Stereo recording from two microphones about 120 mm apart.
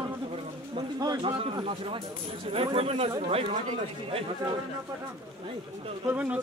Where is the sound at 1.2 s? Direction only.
50° right (ahead or behind).